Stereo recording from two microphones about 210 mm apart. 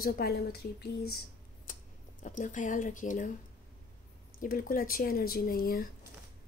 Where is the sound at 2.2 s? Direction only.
35° left (ahead or behind).